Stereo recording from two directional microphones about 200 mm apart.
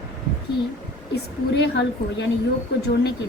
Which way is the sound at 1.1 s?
55° left (ahead or behind).